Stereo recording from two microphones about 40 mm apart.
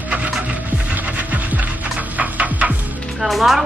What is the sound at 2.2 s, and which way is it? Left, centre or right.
Music, right.